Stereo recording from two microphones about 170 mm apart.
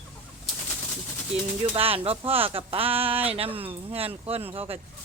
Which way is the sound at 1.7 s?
35° right (ahead or behind).